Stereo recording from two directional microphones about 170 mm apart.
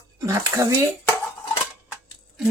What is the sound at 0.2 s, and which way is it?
Cutlery, 20° right (ahead or behind).